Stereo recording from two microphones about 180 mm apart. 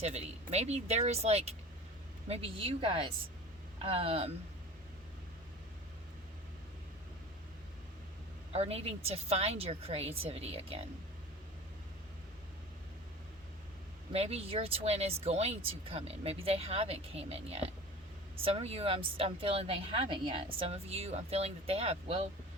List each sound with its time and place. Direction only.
0.0 s speech: 35° right (ahead or behind)
8.5 s speech: 35° right (ahead or behind)
14.1 s speech: 35° right (ahead or behind)